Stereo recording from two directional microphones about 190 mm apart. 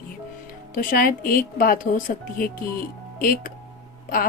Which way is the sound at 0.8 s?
45° left (ahead or behind).